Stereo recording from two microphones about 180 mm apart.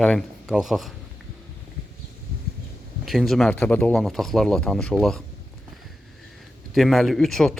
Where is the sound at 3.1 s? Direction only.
Centre (ahead or behind).